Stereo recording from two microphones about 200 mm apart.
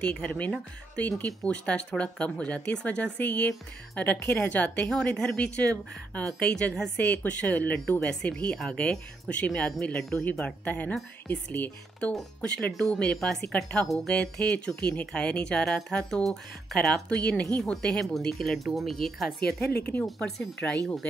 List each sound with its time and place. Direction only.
0.0 s speech: 5° left (ahead or behind)
19.4 s a woman's voice: 50° left (ahead or behind)
19.9 s speech: 5° left (ahead or behind)